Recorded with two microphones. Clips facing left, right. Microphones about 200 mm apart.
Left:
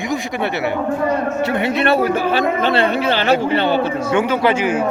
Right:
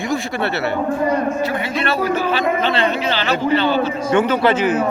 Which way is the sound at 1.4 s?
65° left (ahead or behind).